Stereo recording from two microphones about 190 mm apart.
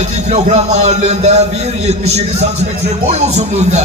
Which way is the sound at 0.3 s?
35° right (ahead or behind).